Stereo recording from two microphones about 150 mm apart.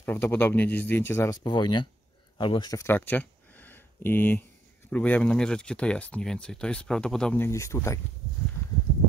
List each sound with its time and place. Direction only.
0.0 s speech: 15° left (ahead or behind)
1.3 s speech: 30° left (ahead or behind)